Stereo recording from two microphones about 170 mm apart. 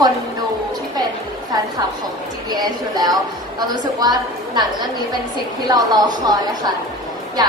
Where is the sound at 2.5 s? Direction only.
20° right (ahead or behind).